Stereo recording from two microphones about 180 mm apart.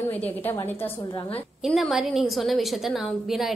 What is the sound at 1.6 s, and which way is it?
A woman's voice, centre (ahead or behind).